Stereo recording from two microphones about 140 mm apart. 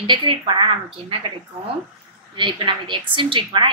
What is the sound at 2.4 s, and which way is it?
A woman's voice, 35° right (ahead or behind).